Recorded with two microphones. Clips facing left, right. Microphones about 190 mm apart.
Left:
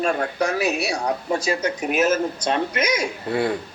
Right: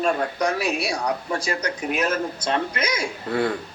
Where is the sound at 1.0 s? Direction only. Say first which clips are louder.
Left 3 dB; 25° left (ahead or behind).